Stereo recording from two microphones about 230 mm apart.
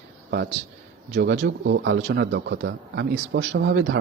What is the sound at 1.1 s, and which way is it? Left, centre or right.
Speech, right.